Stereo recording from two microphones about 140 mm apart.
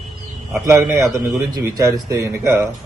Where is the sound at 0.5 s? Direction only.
20° right (ahead or behind).